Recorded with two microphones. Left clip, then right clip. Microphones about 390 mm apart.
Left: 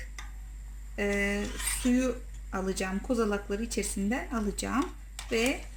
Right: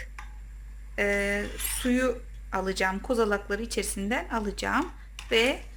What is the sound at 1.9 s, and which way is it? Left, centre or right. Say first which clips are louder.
Speech: right 3 dB; right.